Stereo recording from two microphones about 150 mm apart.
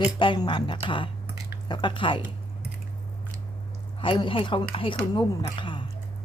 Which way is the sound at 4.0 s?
35° left (ahead or behind).